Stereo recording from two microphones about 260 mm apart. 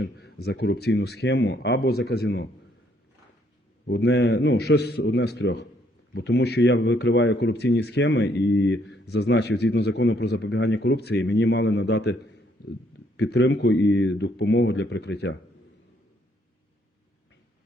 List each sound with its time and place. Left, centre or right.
0.0 s speech: left
3.8 s speech: left